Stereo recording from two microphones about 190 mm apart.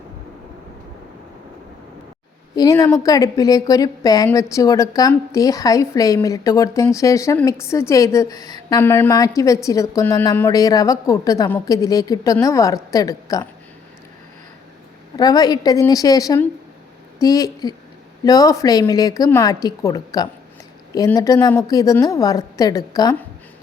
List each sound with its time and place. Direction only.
2.6 s a woman's voice: 20° left (ahead or behind)
15.1 s a woman's voice: 20° left (ahead or behind)